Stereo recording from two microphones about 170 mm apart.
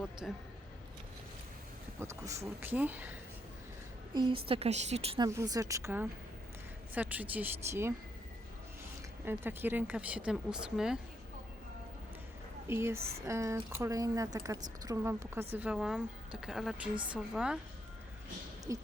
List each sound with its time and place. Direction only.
0.0 s speech: centre (ahead or behind)
2.0 s speech: 15° right (ahead or behind)
4.1 s a woman's voice: 30° right (ahead or behind)
5.2 s speech: 20° right (ahead or behind)
9.2 s speech: 10° right (ahead or behind)
12.6 s speech: 15° right (ahead or behind)
13.0 s a woman's voice: 35° right (ahead or behind)
13.2 s a woman's voice: 15° right (ahead or behind)
18.7 s speech: 15° right (ahead or behind)